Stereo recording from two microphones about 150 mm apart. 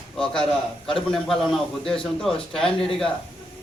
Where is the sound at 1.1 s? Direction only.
Centre (ahead or behind).